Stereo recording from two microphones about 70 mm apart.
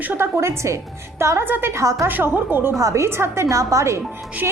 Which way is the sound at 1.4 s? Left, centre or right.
Right.